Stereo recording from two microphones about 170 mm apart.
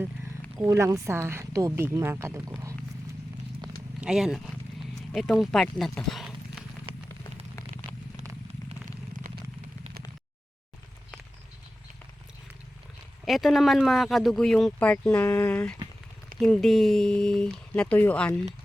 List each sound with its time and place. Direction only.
0.6 s a woman's voice: 20° right (ahead or behind)
4.0 s speech: 5° right (ahead or behind)
13.2 s speech: centre (ahead or behind)